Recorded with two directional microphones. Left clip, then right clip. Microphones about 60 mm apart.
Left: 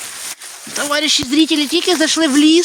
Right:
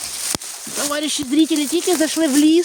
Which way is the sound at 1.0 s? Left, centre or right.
Right.